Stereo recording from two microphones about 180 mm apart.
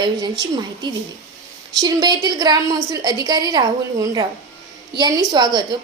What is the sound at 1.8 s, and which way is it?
A woman's voice, 20° right (ahead or behind).